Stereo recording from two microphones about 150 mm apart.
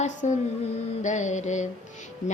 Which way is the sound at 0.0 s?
50° left (ahead or behind).